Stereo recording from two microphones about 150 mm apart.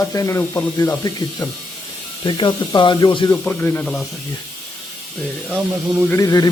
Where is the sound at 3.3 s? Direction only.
10° left (ahead or behind).